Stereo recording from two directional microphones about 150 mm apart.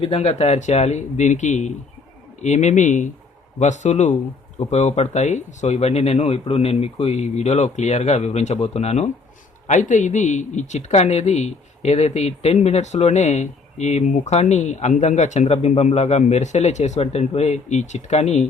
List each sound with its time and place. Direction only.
0.0 s speech: 40° left (ahead or behind)